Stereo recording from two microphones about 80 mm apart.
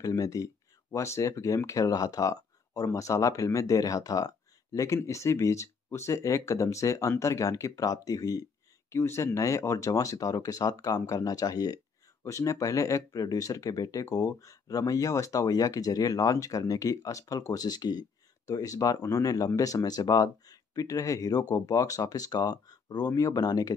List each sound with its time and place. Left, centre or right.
0.0 s speech: left
8.9 s speech: left